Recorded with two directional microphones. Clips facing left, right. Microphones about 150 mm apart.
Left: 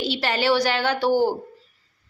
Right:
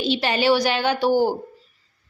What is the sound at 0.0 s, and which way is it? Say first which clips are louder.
A woman's voice: right 3 dB; 20° right (ahead or behind).